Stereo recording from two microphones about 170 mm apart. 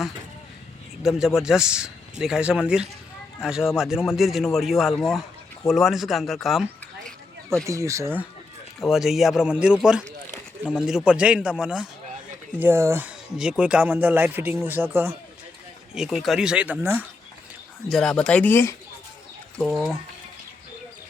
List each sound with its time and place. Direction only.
1.0 s a man's voice: 5° right (ahead or behind)
7.6 s speech: 20° right (ahead or behind)
8.8 s a man's voice: centre (ahead or behind)
10.3 s a sound: 10° left (ahead or behind)
10.8 s a man's voice: 5° right (ahead or behind)
16.0 s a man's voice: centre (ahead or behind)
17.8 s a man's voice: 5° left (ahead or behind)